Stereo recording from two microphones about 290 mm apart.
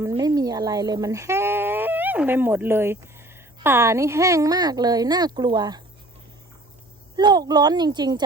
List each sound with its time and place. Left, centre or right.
0.0 s speech: centre
7.2 s speech: centre